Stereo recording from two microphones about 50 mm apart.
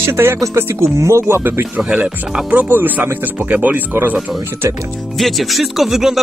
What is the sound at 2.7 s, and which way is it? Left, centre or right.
Speech, right.